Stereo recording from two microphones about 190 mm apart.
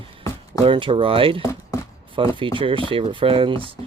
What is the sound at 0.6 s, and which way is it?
Speech, 25° right (ahead or behind).